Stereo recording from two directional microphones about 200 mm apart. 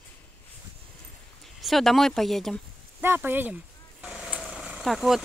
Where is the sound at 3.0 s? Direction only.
10° right (ahead or behind).